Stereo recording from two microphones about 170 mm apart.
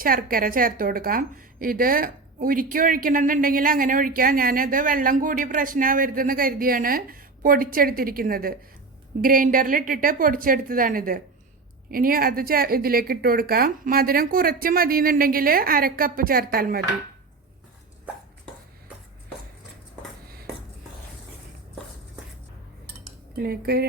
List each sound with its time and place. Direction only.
0.0 s a woman's voice: 60° right (ahead or behind)
23.4 s a woman's voice: 65° right (ahead or behind)